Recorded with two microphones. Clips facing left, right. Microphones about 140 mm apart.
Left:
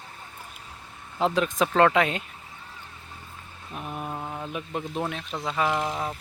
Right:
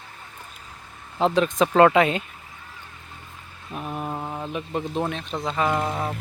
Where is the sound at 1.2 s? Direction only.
Centre (ahead or behind).